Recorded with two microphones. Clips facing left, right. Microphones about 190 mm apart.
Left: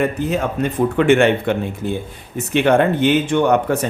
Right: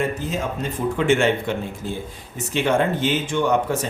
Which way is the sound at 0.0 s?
65° left (ahead or behind).